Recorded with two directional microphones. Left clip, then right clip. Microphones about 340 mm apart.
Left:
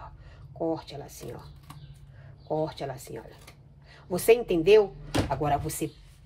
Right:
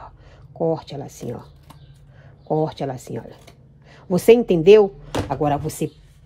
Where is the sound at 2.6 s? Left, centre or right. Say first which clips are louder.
Right 8 dB; right.